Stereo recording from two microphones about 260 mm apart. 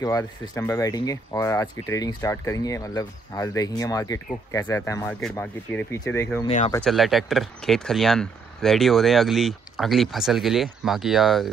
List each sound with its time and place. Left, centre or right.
0.0 s speech: centre